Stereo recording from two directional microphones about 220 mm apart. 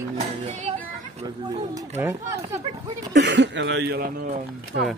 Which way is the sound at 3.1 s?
55° right (ahead or behind).